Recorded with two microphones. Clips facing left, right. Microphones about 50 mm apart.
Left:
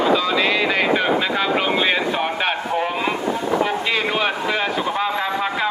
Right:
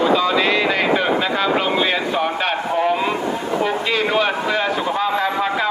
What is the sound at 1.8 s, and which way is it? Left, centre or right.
Speech, centre.